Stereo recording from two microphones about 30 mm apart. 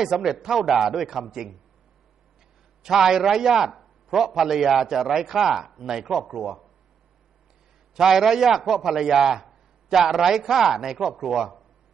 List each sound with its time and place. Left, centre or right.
0.0 s a man's voice: centre
2.8 s a man's voice: centre
3.8 s a sound: centre
4.5 s a man's voice: centre
7.9 s a man's voice: centre
8.2 s a man's voice: centre